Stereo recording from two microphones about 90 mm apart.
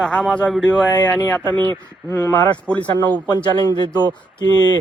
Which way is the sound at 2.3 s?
50° left (ahead or behind).